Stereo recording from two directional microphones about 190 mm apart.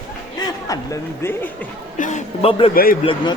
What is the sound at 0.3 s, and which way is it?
A man's voice, 20° left (ahead or behind).